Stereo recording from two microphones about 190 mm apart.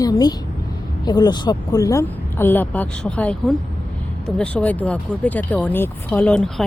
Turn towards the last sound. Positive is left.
turn(degrees=5)  # may be behind; listen again after turning